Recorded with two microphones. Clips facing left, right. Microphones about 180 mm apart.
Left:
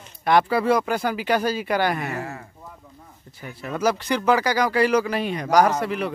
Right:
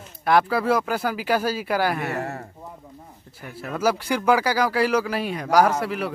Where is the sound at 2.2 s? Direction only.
40° right (ahead or behind).